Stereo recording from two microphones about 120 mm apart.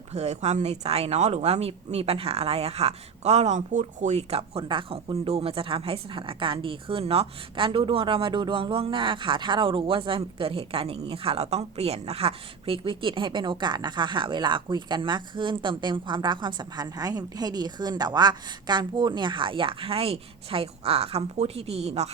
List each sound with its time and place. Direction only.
0.1 s speech: 65° right (ahead or behind)